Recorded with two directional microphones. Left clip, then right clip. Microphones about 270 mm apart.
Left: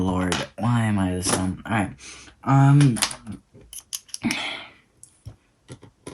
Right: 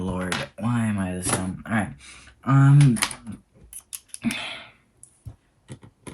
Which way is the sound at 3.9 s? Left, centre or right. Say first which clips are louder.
Left 3 dB; left.